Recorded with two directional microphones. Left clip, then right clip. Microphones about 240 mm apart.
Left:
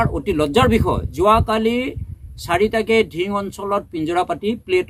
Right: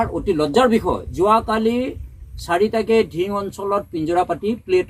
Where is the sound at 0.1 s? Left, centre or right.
Left.